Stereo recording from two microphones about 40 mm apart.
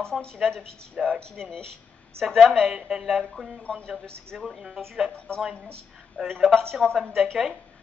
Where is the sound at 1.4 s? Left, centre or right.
Centre.